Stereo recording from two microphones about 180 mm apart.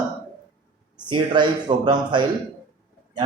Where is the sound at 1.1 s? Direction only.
25° right (ahead or behind).